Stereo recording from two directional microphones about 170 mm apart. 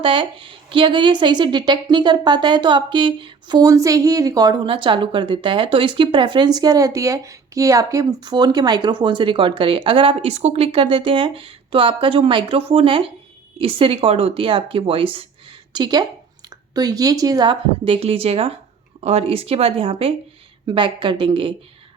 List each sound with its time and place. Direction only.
0.0 s a woman's voice: 30° right (ahead or behind)